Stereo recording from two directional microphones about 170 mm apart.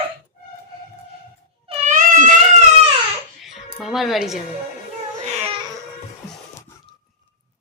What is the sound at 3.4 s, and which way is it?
Music, centre (ahead or behind).